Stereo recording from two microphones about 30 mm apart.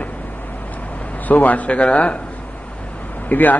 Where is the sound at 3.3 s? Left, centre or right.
Left.